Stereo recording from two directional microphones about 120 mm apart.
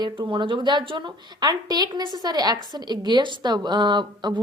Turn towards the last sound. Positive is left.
turn(degrees=-40)  # may be behind; listen again after turning